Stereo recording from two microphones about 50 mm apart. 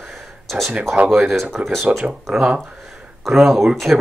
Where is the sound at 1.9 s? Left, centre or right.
Right.